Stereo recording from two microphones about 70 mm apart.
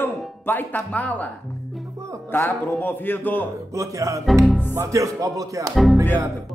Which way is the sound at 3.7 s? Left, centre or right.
Right.